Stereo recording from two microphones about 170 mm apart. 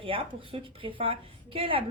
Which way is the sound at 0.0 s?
30° right (ahead or behind).